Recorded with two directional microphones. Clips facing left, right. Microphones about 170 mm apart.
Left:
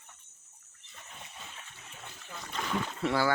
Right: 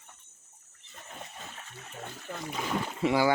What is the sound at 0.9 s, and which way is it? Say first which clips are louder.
Splash: right 5 dB; 45° right (ahead or behind).